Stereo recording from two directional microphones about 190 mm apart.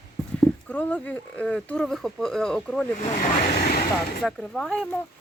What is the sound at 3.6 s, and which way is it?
Speech, 60° left (ahead or behind).